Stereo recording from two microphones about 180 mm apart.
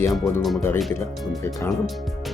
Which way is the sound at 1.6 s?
15° left (ahead or behind).